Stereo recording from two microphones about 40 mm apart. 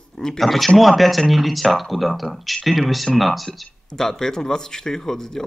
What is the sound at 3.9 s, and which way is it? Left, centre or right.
Speech, centre.